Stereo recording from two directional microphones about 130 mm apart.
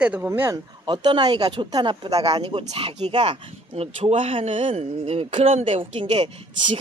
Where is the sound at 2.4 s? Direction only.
45° right (ahead or behind).